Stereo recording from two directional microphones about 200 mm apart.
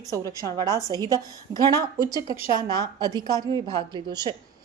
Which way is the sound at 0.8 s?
20° right (ahead or behind).